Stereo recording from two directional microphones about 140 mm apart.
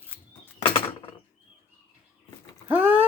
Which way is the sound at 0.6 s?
40° left (ahead or behind).